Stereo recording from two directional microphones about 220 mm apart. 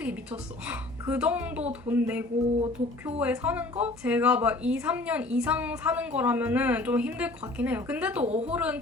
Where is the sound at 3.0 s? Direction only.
5° right (ahead or behind).